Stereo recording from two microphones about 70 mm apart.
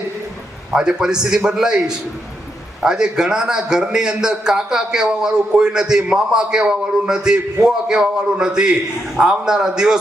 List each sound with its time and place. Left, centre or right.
0.7 s a man's voice: centre